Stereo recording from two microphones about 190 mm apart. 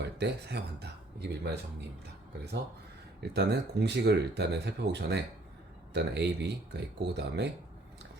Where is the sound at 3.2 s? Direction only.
60° right (ahead or behind).